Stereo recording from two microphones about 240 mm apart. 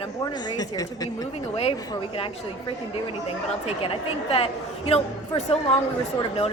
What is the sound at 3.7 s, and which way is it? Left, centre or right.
A man's voice, left.